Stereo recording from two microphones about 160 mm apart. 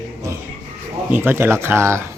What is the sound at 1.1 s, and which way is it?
Speech, 15° right (ahead or behind).